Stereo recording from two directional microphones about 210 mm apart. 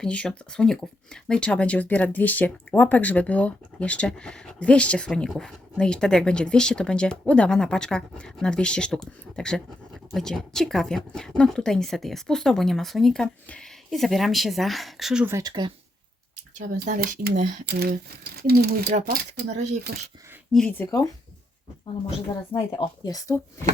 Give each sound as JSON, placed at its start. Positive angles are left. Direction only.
{"t": 0.0, "sound": "speech", "side_deg": 5}
{"t": 16.7, "sound": "speech", "side_deg": -40}
{"t": 20.5, "sound": "speech", "side_deg": 5}
{"t": 22.5, "sound": "speech", "side_deg": 20}